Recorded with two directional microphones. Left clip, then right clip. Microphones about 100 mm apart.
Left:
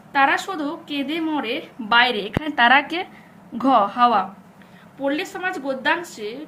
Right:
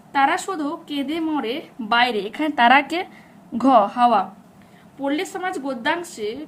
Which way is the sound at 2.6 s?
90° right.